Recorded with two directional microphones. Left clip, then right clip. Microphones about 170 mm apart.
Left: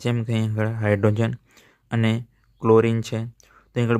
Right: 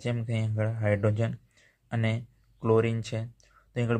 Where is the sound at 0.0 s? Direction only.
50° left (ahead or behind).